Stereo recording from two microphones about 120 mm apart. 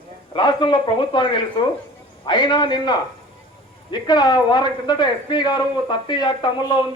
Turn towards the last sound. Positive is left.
turn(degrees=40)  # may be behind; listen again after turning